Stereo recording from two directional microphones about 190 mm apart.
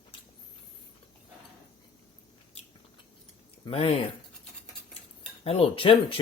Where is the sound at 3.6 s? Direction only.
30° left (ahead or behind).